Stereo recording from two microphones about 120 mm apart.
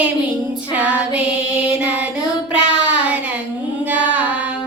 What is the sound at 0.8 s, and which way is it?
Child singing, 10° right (ahead or behind).